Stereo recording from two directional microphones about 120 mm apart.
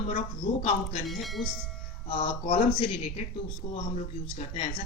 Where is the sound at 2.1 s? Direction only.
50° left (ahead or behind).